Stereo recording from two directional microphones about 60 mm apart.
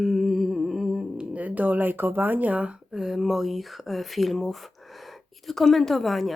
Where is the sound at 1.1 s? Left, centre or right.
Right.